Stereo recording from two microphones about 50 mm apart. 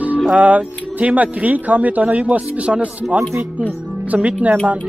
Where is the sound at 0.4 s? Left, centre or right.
Right.